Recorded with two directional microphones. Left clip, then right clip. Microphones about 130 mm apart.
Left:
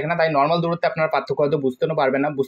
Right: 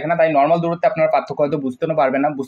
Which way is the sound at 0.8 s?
20° left (ahead or behind).